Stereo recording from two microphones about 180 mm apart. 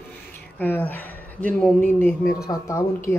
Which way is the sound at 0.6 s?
10° left (ahead or behind).